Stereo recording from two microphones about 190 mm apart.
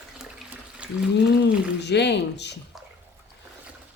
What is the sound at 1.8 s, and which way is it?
Speech, 65° left (ahead or behind).